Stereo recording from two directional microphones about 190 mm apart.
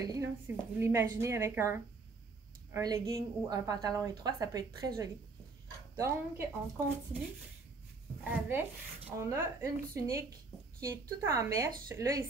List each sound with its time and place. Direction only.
0.0 s a woman's voice: 15° right (ahead or behind)
8.2 s speech: 10° right (ahead or behind)